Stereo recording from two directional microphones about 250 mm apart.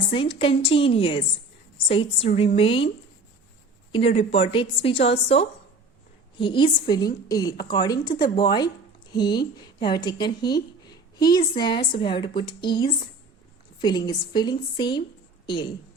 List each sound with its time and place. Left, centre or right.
0.1 s a woman's voice: left
3.9 s a woman's voice: left